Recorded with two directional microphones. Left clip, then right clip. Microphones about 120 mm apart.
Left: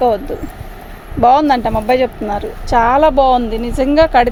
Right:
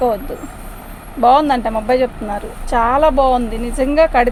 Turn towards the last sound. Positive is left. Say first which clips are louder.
# left 2 dB
turn(degrees=75)  # may be behind; listen again after turning